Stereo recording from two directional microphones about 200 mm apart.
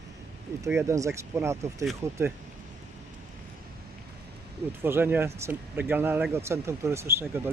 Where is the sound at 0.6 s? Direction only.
15° right (ahead or behind).